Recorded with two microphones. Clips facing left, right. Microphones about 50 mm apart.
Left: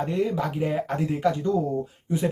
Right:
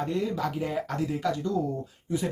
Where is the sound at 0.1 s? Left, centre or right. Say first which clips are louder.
Left 3 dB; left.